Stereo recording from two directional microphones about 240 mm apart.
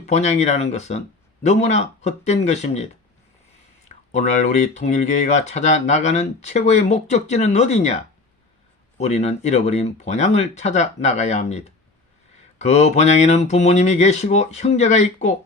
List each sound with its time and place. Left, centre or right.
0.0 s speech: left
3.8 s speech: left